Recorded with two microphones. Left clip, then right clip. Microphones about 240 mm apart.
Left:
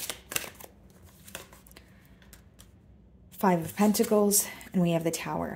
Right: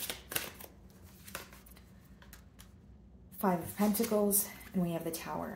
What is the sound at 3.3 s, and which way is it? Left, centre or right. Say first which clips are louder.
Speech: left 7 dB; left.